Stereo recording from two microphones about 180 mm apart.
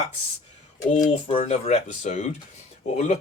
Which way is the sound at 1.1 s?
35° left (ahead or behind).